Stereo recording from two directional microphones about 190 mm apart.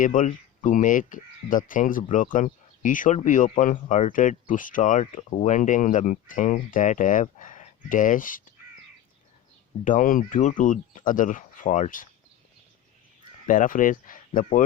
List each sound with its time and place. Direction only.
0.0 s speech: 45° left (ahead or behind)
9.8 s speech: 45° left (ahead or behind)
13.5 s speech: 45° left (ahead or behind)